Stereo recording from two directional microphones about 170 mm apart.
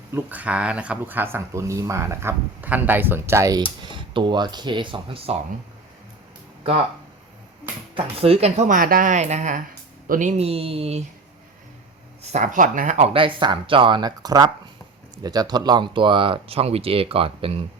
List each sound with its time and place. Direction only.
0.1 s speech: 10° right (ahead or behind)
3.8 s speech: 30° right (ahead or behind)
7.9 s speech: 35° right (ahead or behind)
12.2 s speech: 45° right (ahead or behind)
13.1 s speech: 30° right (ahead or behind)